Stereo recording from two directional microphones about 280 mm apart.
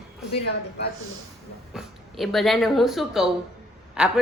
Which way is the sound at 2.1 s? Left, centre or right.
Centre.